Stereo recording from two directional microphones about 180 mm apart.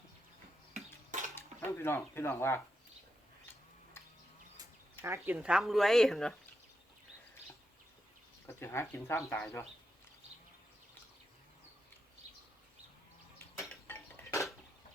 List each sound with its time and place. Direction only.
1.4 s speech: 15° left (ahead or behind)
5.0 s speech: 15° right (ahead or behind); by 6.3 s centre (ahead or behind)
8.4 s speech: 15° left (ahead or behind)
13.8 s dishes: 15° left (ahead or behind)